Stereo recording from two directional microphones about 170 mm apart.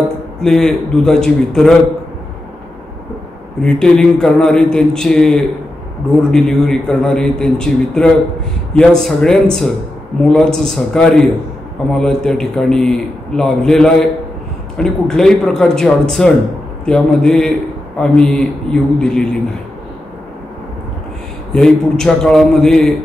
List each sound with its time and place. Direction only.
0.4 s a man's voice: 5° left (ahead or behind)
3.6 s a man's voice: 5° left (ahead or behind)
21.5 s a man's voice: 5° left (ahead or behind)